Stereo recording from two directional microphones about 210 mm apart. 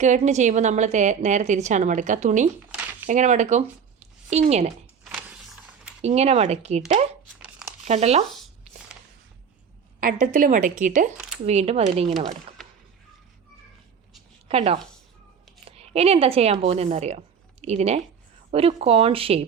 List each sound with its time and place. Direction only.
0.0 s a woman's voice: 35° right (ahead or behind)
4.0 s a sound: 30° right (ahead or behind)
5.0 s vehicle: 5° right (ahead or behind)
6.0 s a woman's voice: 30° right (ahead or behind)
10.0 s a woman's voice: 40° right (ahead or behind)
14.4 s a woman's voice: 30° right (ahead or behind)